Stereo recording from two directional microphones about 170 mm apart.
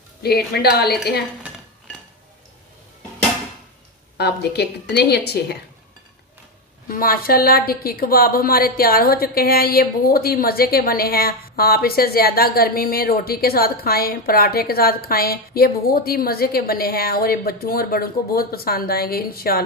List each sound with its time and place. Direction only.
0.2 s a woman's voice: 70° left (ahead or behind)
4.2 s a woman's voice: 75° left (ahead or behind)
6.9 s a woman's voice: 60° left (ahead or behind)